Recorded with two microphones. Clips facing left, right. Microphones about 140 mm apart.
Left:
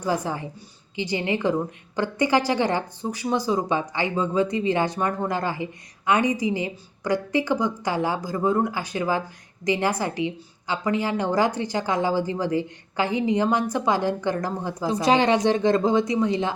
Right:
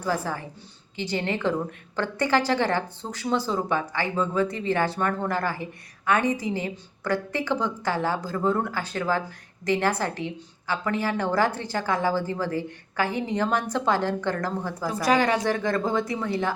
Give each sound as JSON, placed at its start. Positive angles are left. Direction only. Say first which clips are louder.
{"t": 0.0, "sound": "a woman's voice", "louder": "left 2 dB", "side_deg": 15}